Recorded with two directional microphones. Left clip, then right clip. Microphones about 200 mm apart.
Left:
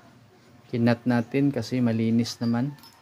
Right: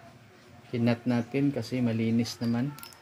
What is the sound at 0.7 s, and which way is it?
Speech, 20° left (ahead or behind).